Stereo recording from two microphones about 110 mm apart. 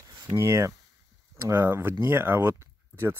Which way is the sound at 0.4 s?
25° right (ahead or behind).